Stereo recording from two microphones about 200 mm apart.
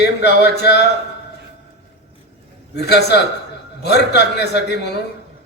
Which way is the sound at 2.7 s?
55° left (ahead or behind).